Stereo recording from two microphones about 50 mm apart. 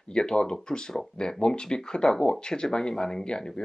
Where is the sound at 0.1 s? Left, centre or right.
Centre.